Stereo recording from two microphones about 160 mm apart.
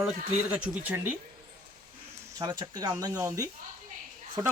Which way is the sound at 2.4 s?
25° right (ahead or behind).